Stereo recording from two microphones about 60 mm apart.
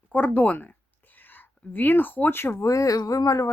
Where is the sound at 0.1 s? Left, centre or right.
Left.